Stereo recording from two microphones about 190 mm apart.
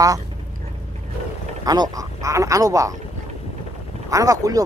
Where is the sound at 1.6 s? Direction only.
20° right (ahead or behind).